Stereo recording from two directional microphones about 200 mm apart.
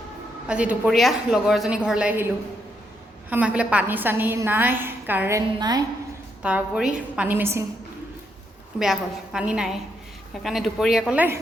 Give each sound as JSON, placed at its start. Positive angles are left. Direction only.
{"t": 0.4, "sound": "a woman's voice", "side_deg": -5}
{"t": 5.5, "sound": "a woman's voice", "side_deg": -20}
{"t": 6.4, "sound": "a woman's voice", "side_deg": -5}
{"t": 8.8, "sound": "a woman's voice", "side_deg": -5}